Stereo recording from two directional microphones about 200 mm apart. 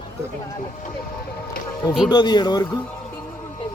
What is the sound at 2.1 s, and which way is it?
Speech, 20° left (ahead or behind).